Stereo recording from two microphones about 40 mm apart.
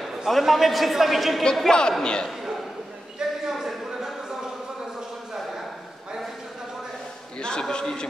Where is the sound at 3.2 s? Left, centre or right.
Centre.